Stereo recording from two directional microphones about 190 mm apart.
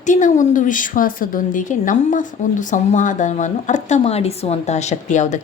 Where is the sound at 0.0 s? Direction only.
40° left (ahead or behind).